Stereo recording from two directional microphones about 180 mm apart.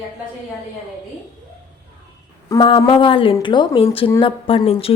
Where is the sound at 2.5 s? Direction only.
25° left (ahead or behind).